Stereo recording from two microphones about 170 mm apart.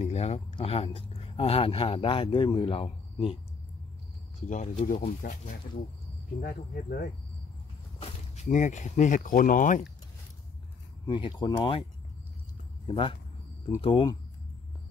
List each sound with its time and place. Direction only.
0.0 s speech: 40° left (ahead or behind)
4.4 s speech: 45° left (ahead or behind)
6.4 s cricket: 55° left (ahead or behind)
8.0 s speech: 45° left (ahead or behind)
11.1 s speech: 30° left (ahead or behind)
12.8 s speech: 30° left (ahead or behind)